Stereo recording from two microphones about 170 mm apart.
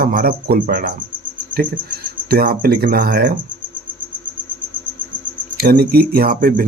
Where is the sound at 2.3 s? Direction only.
55° right (ahead or behind).